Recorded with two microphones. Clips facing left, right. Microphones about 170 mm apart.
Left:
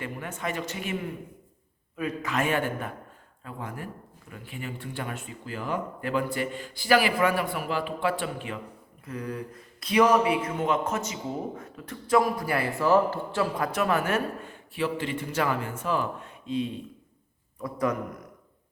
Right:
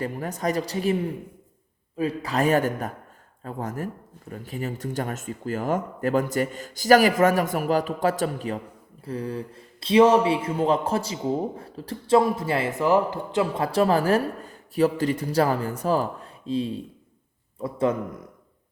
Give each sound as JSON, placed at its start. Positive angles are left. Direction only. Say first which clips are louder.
{"t": 0.0, "sound": "speech", "louder": "right 6 dB", "side_deg": -40}